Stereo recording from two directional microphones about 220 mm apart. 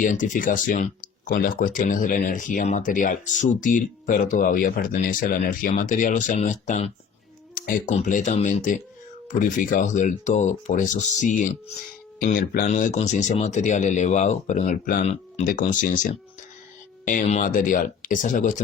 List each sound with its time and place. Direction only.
0.0 s speech: 35° left (ahead or behind)
7.5 s a sound: 40° left (ahead or behind)
7.9 s speech: 35° left (ahead or behind)